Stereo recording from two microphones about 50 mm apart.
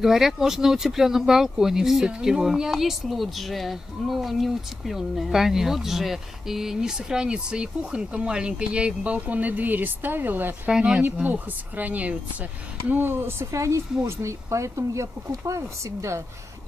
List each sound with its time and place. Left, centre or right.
0.0 s speech: centre; by 10.7 s right
10.7 s speech: centre
11.2 s speech: right
12.9 s speech: right
13.5 s speech: right